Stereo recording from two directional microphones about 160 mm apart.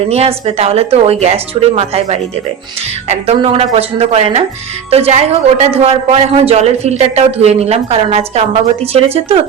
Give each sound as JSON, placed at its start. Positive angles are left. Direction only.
{"t": 0.1, "sound": "a man's voice", "side_deg": -40}